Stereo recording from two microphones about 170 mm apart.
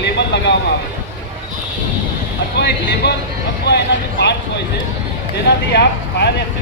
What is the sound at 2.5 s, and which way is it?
Speech, 80° left.